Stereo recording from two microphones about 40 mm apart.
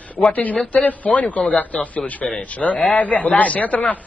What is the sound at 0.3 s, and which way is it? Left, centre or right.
A man's voice, left.